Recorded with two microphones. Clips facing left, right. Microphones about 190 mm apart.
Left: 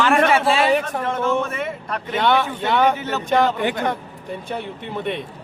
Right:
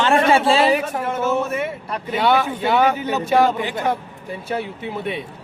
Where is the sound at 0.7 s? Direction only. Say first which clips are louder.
Even; 5° right (ahead or behind).